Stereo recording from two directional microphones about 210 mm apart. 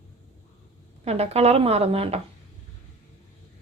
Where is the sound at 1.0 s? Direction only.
30° right (ahead or behind).